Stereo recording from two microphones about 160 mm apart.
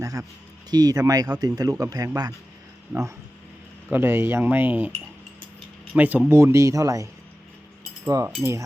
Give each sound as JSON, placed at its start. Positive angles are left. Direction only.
{"t": 0.0, "sound": "speech", "side_deg": -20}
{"t": 3.8, "sound": "speech", "side_deg": -15}
{"t": 5.9, "sound": "speech", "side_deg": -10}